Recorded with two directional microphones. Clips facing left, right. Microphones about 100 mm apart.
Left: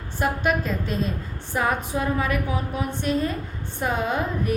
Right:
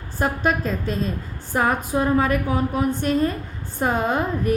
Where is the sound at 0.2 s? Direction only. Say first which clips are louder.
Right 1 dB; 40° right (ahead or behind).